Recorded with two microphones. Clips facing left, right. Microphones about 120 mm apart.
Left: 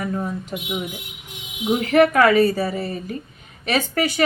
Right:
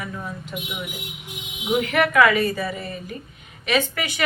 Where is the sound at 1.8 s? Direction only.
40° left (ahead or behind).